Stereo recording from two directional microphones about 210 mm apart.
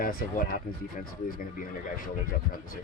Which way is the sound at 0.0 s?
45° left (ahead or behind).